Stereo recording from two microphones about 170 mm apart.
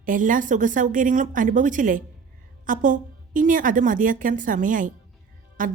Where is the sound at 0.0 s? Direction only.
50° right (ahead or behind).